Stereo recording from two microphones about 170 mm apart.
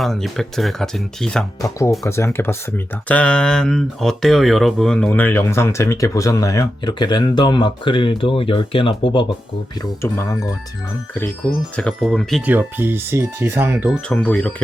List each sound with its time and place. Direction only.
0.0 s speech: centre (ahead or behind)
2.0 s speech: 15° left (ahead or behind)
10.0 s speech: 15° left (ahead or behind)
11.8 s speech: 5° left (ahead or behind)
12.5 s speech: 10° right (ahead or behind)
14.1 s speech: 5° left (ahead or behind)